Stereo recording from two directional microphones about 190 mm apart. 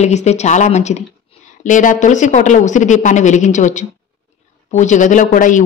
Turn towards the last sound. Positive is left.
turn(degrees=40)  # may be behind; listen again after turning